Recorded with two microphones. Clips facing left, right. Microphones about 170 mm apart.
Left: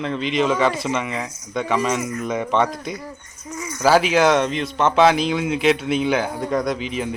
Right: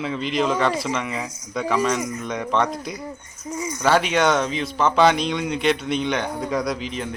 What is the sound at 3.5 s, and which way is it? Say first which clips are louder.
Bird: right 3 dB; 15° right (ahead or behind).